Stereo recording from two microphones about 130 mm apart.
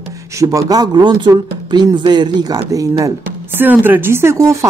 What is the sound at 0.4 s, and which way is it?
Speech, 25° right (ahead or behind).